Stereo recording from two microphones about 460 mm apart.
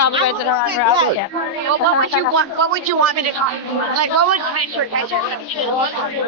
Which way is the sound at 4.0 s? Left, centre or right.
Right.